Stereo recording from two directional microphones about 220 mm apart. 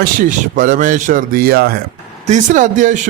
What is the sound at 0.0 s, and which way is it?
Speech, 40° right (ahead or behind).